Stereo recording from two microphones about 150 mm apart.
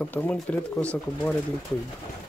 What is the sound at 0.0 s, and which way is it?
Speech, 10° left (ahead or behind).